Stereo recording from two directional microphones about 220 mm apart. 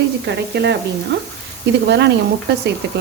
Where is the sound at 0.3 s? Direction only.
50° right (ahead or behind).